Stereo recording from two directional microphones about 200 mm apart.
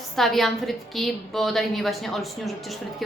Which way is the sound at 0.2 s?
Centre (ahead or behind).